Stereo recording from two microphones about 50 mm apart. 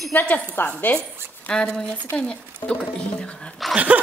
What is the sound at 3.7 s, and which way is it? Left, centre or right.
Speech, right.